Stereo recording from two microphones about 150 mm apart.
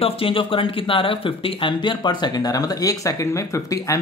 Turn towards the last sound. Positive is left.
turn(degrees=20)  # may be behind; listen again after turning